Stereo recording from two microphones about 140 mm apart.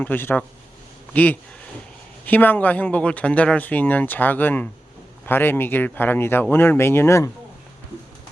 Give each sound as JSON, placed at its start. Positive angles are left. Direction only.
{"t": 0.0, "sound": "speech", "side_deg": 15}